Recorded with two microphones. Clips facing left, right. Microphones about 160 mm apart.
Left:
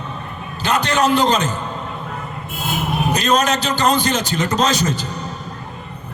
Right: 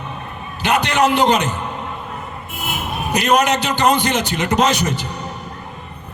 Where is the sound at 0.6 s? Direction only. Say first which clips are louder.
Right 1 dB; 15° right (ahead or behind).